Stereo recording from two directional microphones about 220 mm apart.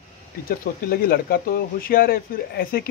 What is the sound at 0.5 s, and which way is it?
Speech, 40° left (ahead or behind).